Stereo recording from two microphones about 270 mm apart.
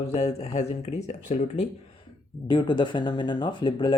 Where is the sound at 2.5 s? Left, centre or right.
Centre.